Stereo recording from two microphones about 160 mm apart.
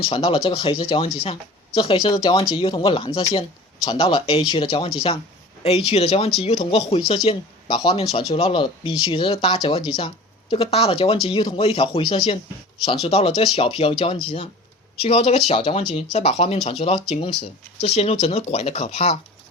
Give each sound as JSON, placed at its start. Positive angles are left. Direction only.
{"t": 0.0, "sound": "speech", "side_deg": 35}